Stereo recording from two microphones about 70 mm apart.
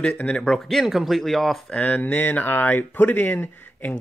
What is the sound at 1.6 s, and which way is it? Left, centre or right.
Speech, centre.